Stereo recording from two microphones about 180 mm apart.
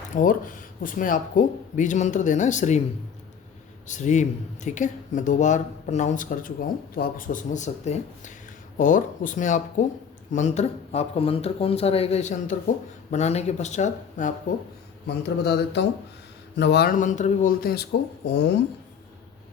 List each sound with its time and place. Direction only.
0.1 s speech: 50° left (ahead or behind)
3.8 s speech: 45° left (ahead or behind)
15.0 s a man's voice: 65° left (ahead or behind)
18.3 s speech: 75° left (ahead or behind)